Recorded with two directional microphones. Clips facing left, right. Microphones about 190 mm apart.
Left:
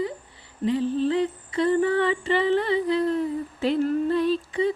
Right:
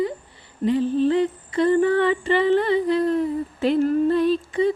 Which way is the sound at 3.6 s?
55° right (ahead or behind).